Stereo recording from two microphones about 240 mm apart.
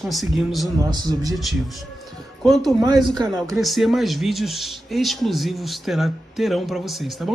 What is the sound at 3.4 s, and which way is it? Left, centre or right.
Speech, centre.